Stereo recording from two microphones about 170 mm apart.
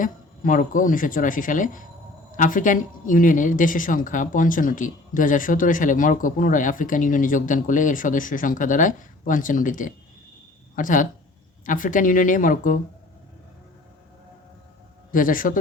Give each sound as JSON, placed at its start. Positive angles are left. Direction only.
{"t": 0.0, "sound": "speech", "side_deg": 50}
{"t": 15.1, "sound": "speech", "side_deg": 55}